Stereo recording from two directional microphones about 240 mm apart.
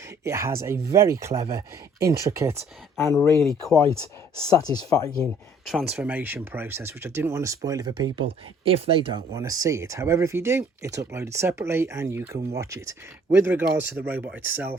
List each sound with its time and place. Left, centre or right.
0.3 s speech: centre
3.0 s speech: centre
5.2 s speech: centre